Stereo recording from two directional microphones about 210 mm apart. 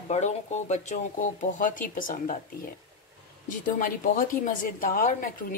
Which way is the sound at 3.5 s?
40° left (ahead or behind).